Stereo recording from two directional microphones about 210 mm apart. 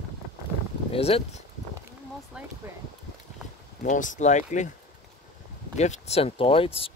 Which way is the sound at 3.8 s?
40° left (ahead or behind).